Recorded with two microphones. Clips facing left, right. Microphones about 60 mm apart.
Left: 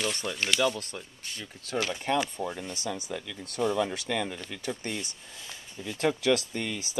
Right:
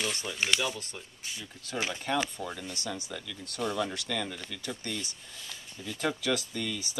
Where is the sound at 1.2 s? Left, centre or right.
Centre.